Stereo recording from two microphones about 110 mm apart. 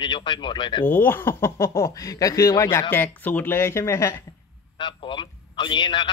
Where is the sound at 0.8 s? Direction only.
20° left (ahead or behind).